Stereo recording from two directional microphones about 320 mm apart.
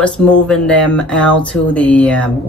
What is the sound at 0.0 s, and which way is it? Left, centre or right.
Speech, centre.